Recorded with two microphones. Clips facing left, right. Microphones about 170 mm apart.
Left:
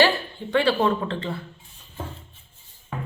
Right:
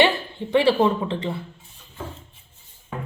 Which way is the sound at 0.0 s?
25° right (ahead or behind).